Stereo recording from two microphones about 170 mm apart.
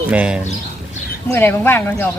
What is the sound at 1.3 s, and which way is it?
Speech, 10° left (ahead or behind).